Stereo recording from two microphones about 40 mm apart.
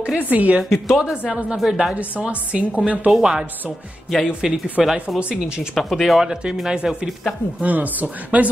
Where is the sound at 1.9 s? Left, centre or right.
Right.